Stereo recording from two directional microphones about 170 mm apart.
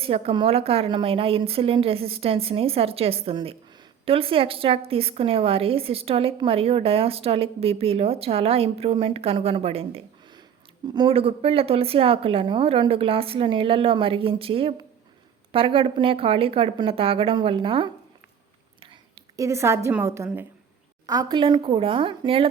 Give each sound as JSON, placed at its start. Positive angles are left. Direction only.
{"t": 0.0, "sound": "a woman's voice", "side_deg": -35}
{"t": 19.4, "sound": "a woman's voice", "side_deg": -15}